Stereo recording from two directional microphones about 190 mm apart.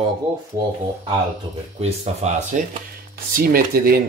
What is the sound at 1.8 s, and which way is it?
Speech, 35° right (ahead or behind).